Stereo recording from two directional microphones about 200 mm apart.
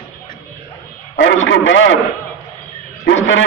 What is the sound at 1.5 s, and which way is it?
Speech, 70° left (ahead or behind).